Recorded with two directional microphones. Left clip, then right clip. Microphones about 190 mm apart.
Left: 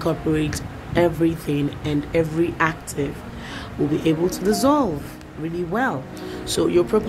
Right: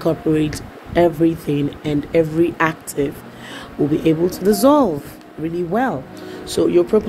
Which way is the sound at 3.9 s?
20° right (ahead or behind).